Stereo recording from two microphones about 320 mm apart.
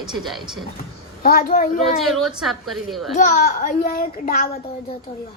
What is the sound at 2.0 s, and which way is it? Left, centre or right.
A woman's voice, centre.